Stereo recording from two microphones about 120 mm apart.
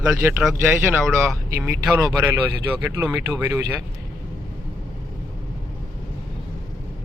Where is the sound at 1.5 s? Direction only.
20° right (ahead or behind).